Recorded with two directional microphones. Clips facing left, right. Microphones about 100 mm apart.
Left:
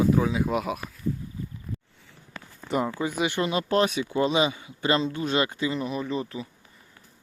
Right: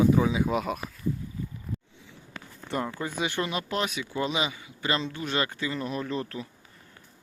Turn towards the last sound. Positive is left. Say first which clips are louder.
# left 2 dB
turn(degrees=5)  # may be behind; listen again after turning